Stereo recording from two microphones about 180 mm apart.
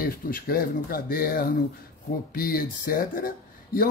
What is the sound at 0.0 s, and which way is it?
Speech, 55° left (ahead or behind).